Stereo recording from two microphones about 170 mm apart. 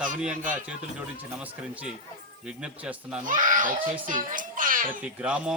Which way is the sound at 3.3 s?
50° right (ahead or behind).